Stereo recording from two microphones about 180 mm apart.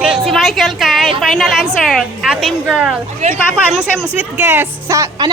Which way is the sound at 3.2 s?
40° right (ahead or behind).